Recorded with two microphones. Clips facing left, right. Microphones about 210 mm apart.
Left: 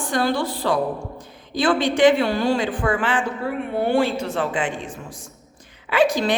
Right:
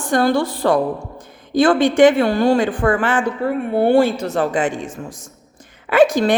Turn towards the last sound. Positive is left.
turn(degrees=-50)  # may be behind; listen again after turning